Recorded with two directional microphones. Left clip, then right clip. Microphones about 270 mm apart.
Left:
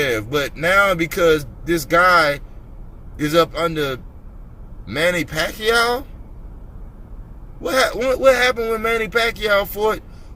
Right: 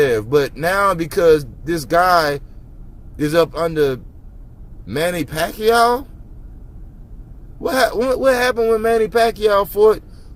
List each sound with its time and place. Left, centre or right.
0.0 s speech: right
7.6 s speech: right